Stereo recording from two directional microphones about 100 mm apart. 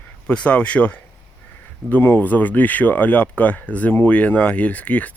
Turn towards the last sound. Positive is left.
turn(degrees=15)  # may be behind; listen again after turning